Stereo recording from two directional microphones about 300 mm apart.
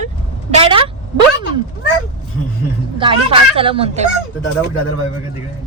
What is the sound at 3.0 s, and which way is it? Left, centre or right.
Speech, centre.